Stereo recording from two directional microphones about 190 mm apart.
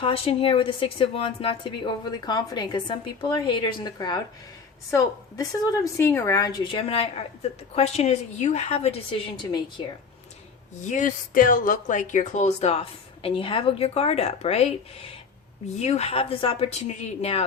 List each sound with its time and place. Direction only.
0.0 s a woman's voice: 30° left (ahead or behind)
10.8 s speech: 40° left (ahead or behind)